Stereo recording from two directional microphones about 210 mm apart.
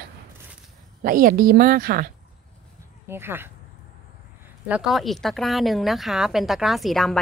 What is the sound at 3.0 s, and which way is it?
Speech, 10° right (ahead or behind).